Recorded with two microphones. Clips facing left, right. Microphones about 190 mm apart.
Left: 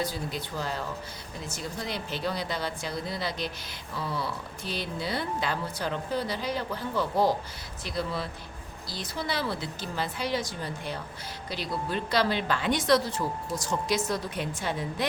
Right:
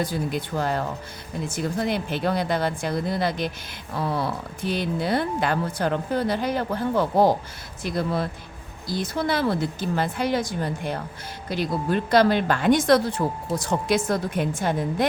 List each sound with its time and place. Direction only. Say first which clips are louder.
0.0 s a woman's voice: right 6 dB; 50° right (ahead or behind)